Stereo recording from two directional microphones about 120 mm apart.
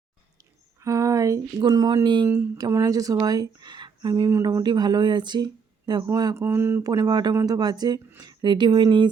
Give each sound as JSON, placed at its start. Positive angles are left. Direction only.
{"t": 0.8, "sound": "a sound", "side_deg": -25}
{"t": 1.6, "sound": "speech", "side_deg": -35}
{"t": 2.2, "sound": "speech", "side_deg": -20}
{"t": 4.1, "sound": "speech", "side_deg": -25}
{"t": 6.8, "sound": "speech", "side_deg": -35}